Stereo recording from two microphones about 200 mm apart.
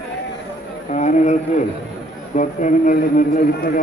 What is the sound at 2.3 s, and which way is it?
Speech, 40° left (ahead or behind).